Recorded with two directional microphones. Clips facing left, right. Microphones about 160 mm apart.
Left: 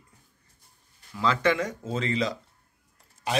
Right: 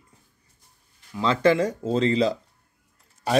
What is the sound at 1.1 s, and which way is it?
Speech, 30° right (ahead or behind).